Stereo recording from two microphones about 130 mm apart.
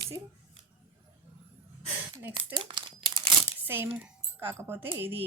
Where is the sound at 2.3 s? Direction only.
40° right (ahead or behind).